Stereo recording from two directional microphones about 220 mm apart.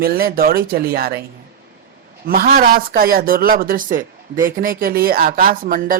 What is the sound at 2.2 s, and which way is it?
Speech, 40° right (ahead or behind).